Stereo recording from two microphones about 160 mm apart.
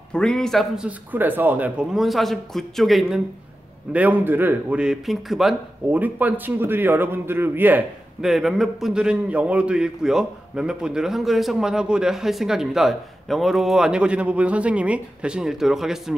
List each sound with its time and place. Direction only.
0.1 s a man's voice: 5° left (ahead or behind)